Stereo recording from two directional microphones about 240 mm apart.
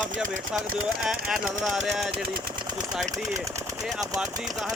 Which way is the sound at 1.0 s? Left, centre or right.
Centre.